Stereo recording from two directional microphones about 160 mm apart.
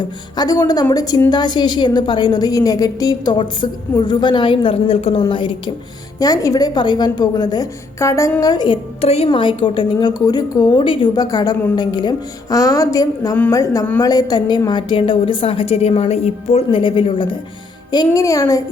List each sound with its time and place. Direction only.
0.0 s a woman's voice: 25° left (ahead or behind)